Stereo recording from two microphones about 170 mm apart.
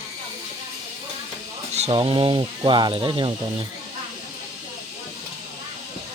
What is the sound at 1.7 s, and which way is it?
Speech, 35° right (ahead or behind).